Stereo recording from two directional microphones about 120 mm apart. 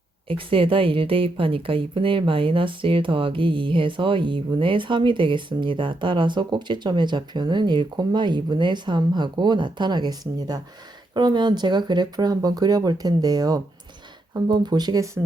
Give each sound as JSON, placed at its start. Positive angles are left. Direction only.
{"t": 0.3, "sound": "speech", "side_deg": -50}